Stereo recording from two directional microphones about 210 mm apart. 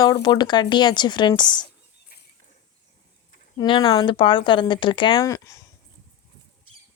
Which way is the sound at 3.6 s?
20° left (ahead or behind).